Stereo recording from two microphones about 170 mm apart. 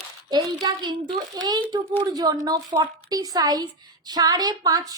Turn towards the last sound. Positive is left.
turn(degrees=-20)  # may be behind; listen again after turning